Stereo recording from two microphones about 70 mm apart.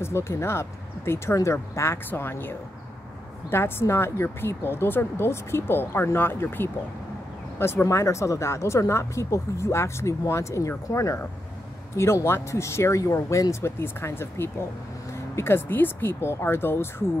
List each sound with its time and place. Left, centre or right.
0.0 s a woman's voice: left